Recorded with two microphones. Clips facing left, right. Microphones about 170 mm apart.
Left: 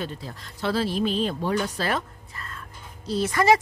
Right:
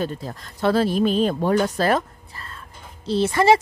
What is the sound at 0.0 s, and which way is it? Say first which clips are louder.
Speech: right 6 dB; 45° right (ahead or behind).